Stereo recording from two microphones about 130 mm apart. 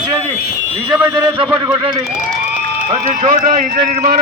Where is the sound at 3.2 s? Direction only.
90° right.